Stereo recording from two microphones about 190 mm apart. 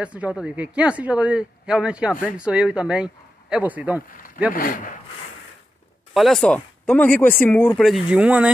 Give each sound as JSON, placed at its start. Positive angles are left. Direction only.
{"t": 0.0, "sound": "speech", "side_deg": -5}
{"t": 4.6, "sound": "speech", "side_deg": 45}
{"t": 6.1, "sound": "speech", "side_deg": 0}